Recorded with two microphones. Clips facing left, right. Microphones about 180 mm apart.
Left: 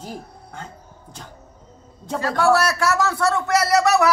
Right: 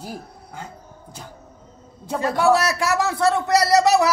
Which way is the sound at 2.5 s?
25° right (ahead or behind).